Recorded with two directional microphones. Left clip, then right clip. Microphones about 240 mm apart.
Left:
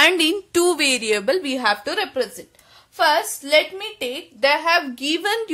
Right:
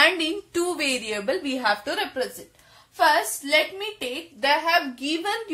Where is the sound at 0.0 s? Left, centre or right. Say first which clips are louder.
Left 4 dB; left.